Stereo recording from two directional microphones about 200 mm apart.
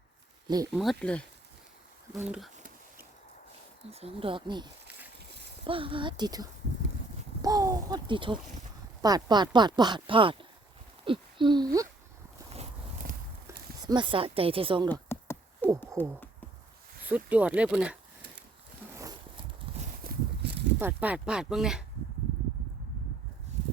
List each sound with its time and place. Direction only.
0.4 s speech: 20° right (ahead or behind)
0.7 s speech: centre (ahead or behind)
3.9 s speech: 30° right (ahead or behind)
13.0 s walk: 45° right (ahead or behind)
13.8 s speech: 25° right (ahead or behind)
15.1 s a sound: 10° left (ahead or behind)
16.0 s speech: 10° left (ahead or behind)
17.1 s speech: 10° right (ahead or behind)
18.9 s a sound: 15° right (ahead or behind)
20.1 s a sound: 55° right (ahead or behind)
20.7 s speech: 10° right (ahead or behind)